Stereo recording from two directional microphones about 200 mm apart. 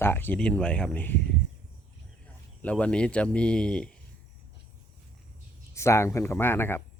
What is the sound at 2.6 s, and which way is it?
A man's voice, 5° left (ahead or behind).